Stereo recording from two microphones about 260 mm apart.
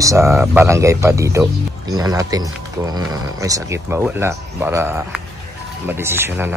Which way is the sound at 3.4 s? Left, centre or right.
Centre.